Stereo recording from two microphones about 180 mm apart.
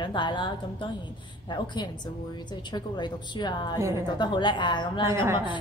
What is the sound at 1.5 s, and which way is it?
Speech, 25° left (ahead or behind).